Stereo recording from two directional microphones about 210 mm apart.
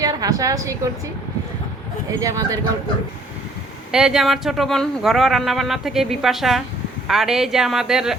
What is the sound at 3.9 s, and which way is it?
Speech, 5° right (ahead or behind).